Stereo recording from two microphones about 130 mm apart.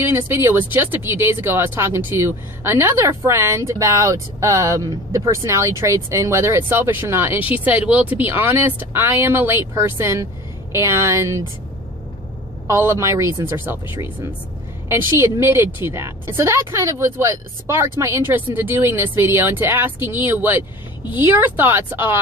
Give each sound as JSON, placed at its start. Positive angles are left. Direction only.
{"t": 0.0, "sound": "speech", "side_deg": -20}
{"t": 12.6, "sound": "a woman's voice", "side_deg": -20}
{"t": 15.1, "sound": "a woman's voice", "side_deg": -20}